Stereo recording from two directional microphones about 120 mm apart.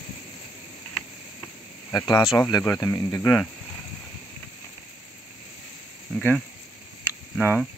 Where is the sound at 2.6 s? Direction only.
25° left (ahead or behind).